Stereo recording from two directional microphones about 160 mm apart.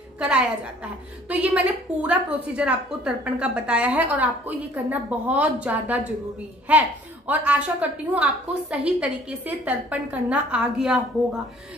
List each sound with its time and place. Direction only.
0.2 s a woman's voice: 10° right (ahead or behind)